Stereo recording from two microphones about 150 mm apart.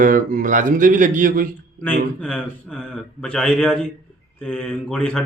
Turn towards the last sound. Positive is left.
turn(degrees=5)  # may be behind; listen again after turning